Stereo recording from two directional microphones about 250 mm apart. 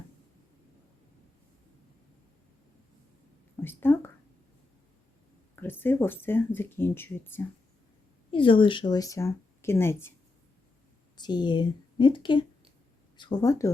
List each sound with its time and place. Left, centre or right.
3.6 s speech: centre
5.5 s speech: centre
8.3 s speech: centre
11.2 s speech: centre